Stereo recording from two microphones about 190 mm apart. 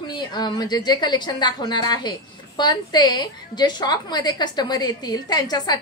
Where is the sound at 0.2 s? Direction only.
20° left (ahead or behind).